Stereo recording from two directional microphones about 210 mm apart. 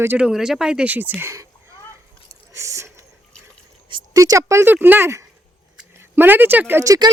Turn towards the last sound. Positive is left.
turn(degrees=-15)  # may be behind; listen again after turning